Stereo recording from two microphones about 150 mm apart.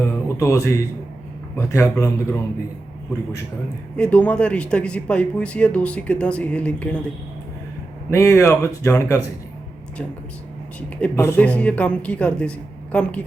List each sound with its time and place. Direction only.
0.0 s a sound: 20° left (ahead or behind)
1.5 s speech: 20° left (ahead or behind)
3.9 s speech: 5° left (ahead or behind)
8.1 s speech: 20° left (ahead or behind)
11.1 s speech: 15° left (ahead or behind)